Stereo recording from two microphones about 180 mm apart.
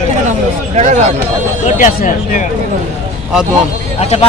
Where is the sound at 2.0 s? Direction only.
45° left (ahead or behind).